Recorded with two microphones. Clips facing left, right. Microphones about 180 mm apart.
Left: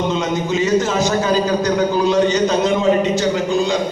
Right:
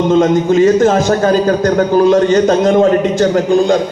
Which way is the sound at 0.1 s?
50° right (ahead or behind).